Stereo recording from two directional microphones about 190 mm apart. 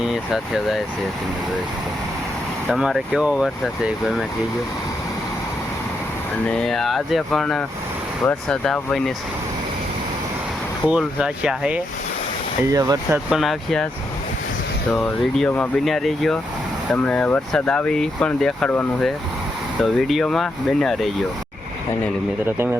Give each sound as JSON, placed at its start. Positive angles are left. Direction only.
{"t": 0.0, "sound": "speech", "side_deg": 0}
{"t": 2.6, "sound": "speech", "side_deg": 0}
{"t": 6.4, "sound": "speech", "side_deg": 5}
{"t": 10.8, "sound": "speech", "side_deg": -5}
{"t": 12.7, "sound": "speech", "side_deg": -15}
{"t": 13.3, "sound": "speech", "side_deg": 0}
{"t": 14.9, "sound": "speech", "side_deg": 5}
{"t": 22.4, "sound": "speech", "side_deg": -10}